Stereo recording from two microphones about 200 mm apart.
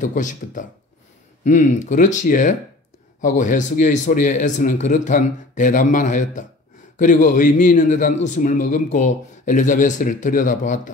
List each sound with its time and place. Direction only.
0.0 s speech: 40° left (ahead or behind)